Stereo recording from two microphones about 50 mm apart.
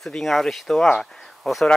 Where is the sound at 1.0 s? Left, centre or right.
Centre.